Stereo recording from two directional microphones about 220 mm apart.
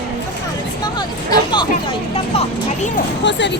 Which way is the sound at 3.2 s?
55° left (ahead or behind).